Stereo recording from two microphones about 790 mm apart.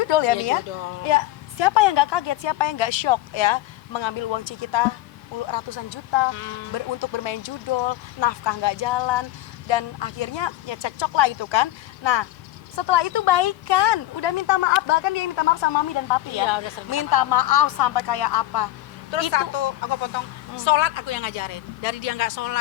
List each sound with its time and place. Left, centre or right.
0.0 s a woman's voice: left
16.3 s a woman's voice: left